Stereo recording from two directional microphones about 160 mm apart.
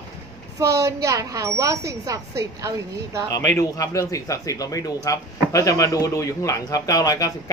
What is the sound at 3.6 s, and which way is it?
Speech, 20° left (ahead or behind).